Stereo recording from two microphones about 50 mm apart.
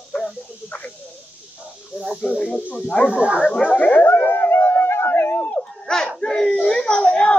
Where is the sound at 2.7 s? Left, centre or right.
Left.